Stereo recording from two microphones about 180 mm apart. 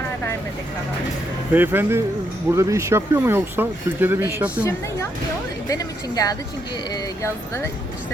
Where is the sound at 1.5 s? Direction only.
10° right (ahead or behind).